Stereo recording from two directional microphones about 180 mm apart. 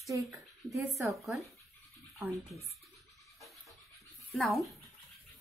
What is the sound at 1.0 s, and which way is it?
Speech, 15° right (ahead or behind).